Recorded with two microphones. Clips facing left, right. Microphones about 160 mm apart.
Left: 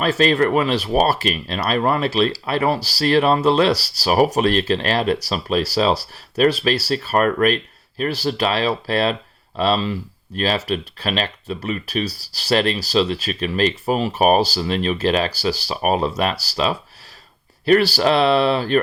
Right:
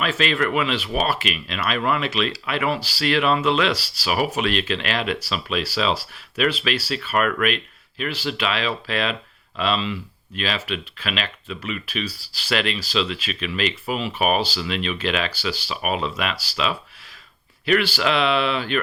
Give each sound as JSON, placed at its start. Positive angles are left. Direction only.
{"t": 0.0, "sound": "speech", "side_deg": 40}